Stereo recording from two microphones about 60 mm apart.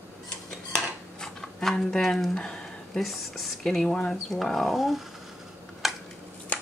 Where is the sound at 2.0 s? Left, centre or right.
Centre.